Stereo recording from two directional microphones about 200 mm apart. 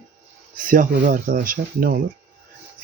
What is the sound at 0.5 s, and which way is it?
Speech, 45° right (ahead or behind).